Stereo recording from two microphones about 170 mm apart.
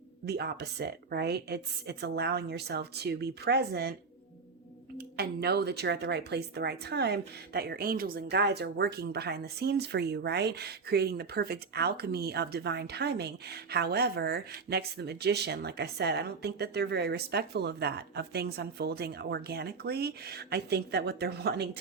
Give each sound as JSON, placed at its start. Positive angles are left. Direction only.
{"t": 0.3, "sound": "speech", "side_deg": -75}
{"t": 4.9, "sound": "speech", "side_deg": -70}